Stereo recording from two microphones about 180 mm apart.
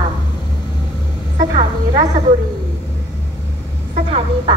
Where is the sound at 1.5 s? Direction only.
25° right (ahead or behind).